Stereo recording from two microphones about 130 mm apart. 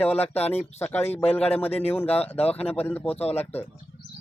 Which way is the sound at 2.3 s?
50° left (ahead or behind).